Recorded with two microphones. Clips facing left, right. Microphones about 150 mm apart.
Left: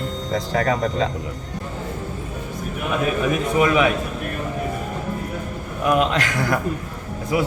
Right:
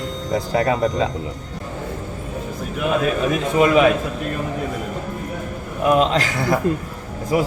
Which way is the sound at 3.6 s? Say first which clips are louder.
Right 4 dB; 35° right (ahead or behind).